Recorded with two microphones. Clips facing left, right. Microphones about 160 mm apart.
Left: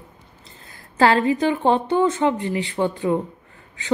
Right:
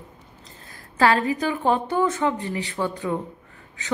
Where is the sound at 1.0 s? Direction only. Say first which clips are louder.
Left 3 dB; 30° left (ahead or behind).